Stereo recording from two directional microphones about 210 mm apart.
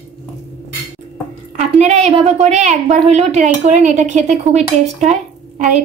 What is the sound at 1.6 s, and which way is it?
A woman's voice, 30° right (ahead or behind).